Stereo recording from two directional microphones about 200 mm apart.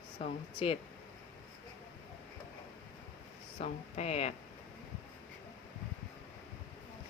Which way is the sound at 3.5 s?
35° left (ahead or behind).